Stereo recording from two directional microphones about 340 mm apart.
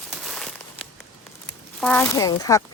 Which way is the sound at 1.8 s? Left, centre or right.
Centre.